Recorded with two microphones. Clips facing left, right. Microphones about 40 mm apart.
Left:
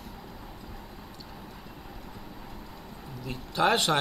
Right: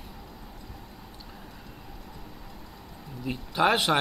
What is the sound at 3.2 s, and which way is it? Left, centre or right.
Speech, centre.